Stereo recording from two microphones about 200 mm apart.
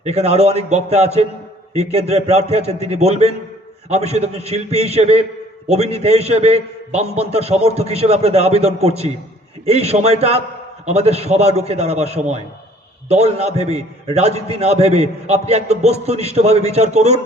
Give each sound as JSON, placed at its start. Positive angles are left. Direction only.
{"t": 0.0, "sound": "a man's voice", "side_deg": -30}